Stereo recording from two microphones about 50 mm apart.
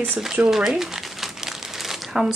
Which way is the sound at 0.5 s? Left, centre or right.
Centre.